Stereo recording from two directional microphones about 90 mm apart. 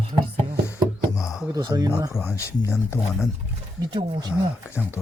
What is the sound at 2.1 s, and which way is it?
Speech, 30° left (ahead or behind).